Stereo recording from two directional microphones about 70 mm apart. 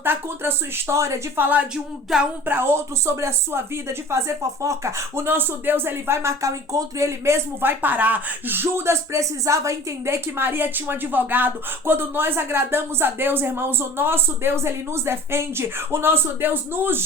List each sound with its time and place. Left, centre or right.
0.0 s speech: right
1.4 s speech: right
1.7 s speech: centre
2.5 s speech: right
7.6 s speech: right
10.3 s speech: right